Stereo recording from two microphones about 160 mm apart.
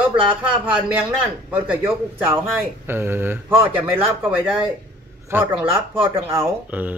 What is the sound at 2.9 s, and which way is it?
Speech, 15° right (ahead or behind).